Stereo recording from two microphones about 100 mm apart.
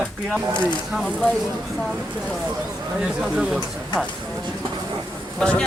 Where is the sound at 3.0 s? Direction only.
5° right (ahead or behind).